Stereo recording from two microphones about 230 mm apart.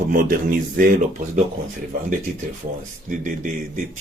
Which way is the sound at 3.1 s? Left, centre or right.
Right.